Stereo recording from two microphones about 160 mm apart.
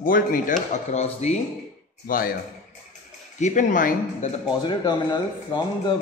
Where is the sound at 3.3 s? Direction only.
50° left (ahead or behind).